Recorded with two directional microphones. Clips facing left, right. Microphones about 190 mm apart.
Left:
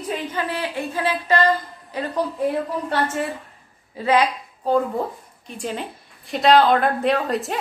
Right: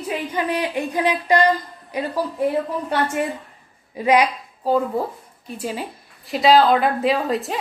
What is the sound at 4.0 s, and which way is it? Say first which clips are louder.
A woman's voice: right 2 dB; 15° right (ahead or behind).